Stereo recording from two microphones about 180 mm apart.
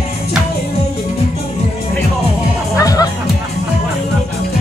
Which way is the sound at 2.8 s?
20° left (ahead or behind).